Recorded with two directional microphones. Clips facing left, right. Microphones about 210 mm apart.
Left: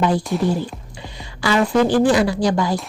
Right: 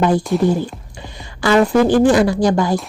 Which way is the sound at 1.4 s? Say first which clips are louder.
Right 4 dB; 50° right (ahead or behind).